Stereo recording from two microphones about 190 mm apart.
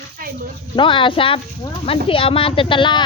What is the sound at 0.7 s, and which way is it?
Speech, 25° left (ahead or behind).